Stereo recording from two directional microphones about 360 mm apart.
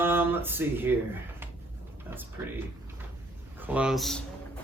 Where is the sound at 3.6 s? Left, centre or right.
Centre.